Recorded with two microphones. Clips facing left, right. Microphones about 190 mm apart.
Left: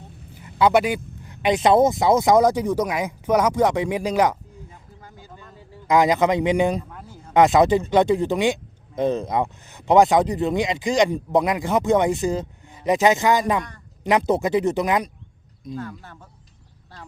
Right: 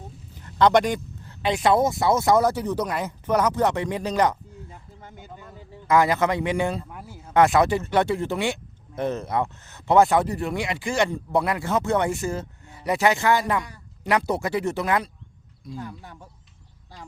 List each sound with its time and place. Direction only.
0.3 s speech: 10° left (ahead or behind)
5.0 s vehicle: 20° right (ahead or behind)
5.9 s speech: 15° left (ahead or behind)
15.8 s speech: 15° right (ahead or behind)